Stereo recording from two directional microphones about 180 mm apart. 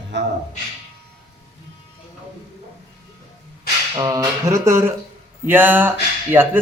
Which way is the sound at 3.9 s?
20° right (ahead or behind).